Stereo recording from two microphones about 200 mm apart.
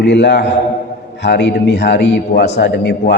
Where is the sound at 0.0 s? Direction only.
60° left (ahead or behind).